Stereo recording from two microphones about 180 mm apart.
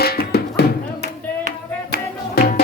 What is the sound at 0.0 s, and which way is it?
Music, 60° left (ahead or behind).